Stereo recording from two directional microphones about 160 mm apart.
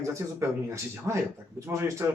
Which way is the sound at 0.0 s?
20° right (ahead or behind).